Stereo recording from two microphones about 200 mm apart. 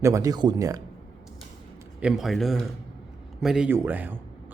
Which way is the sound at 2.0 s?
Centre (ahead or behind).